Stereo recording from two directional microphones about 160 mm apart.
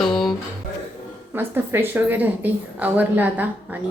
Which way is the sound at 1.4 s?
15° right (ahead or behind).